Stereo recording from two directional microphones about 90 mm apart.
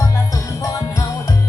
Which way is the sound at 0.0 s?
35° left (ahead or behind).